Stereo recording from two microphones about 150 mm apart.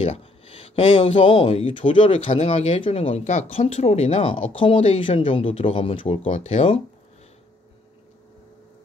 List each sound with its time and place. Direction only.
0.0 s speech: 40° left (ahead or behind)